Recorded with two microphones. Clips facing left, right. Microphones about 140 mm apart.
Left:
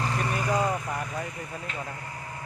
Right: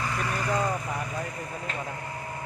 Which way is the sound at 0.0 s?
30° left (ahead or behind).